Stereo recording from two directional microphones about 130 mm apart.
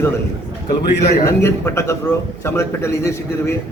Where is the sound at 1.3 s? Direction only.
20° left (ahead or behind).